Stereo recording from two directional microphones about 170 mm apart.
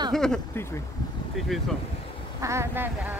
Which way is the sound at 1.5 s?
Centre (ahead or behind).